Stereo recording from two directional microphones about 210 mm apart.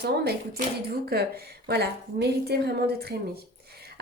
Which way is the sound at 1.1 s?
50° right (ahead or behind).